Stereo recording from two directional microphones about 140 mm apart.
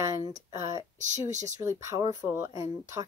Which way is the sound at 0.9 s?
60° right (ahead or behind).